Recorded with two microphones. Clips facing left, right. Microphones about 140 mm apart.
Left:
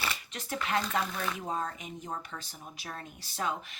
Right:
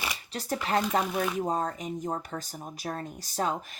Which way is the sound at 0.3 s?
35° right (ahead or behind).